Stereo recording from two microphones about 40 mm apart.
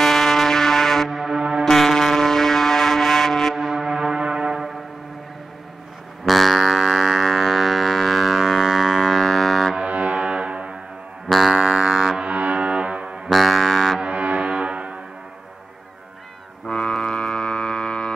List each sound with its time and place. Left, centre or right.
0.0 s music: centre
1.1 s music: centre
1.6 s music: centre
3.5 s a sound: centre
4.2 s brass instrument: right
6.2 s a sound: centre
9.8 s foghorn: right
11.2 s music: centre
11.5 s music: centre
11.9 s music: centre
12.2 s foghorn: right
13.3 s music: centre
14.0 s foghorn: right
16.7 s music: left